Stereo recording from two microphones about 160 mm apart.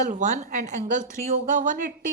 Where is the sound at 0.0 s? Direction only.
50° right (ahead or behind).